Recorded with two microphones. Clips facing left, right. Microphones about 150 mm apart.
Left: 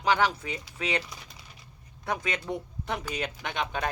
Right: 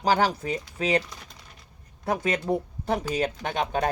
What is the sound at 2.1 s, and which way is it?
Speech, 40° right (ahead or behind).